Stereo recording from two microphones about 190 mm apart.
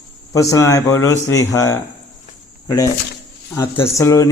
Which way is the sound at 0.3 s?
15° left (ahead or behind).